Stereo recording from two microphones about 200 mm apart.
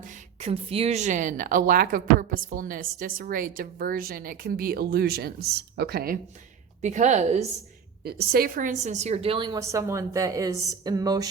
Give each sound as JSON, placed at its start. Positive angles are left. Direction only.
{"t": 0.0, "sound": "speech", "side_deg": -35}
{"t": 6.8, "sound": "a woman's voice", "side_deg": -35}
{"t": 8.0, "sound": "a woman's voice", "side_deg": -50}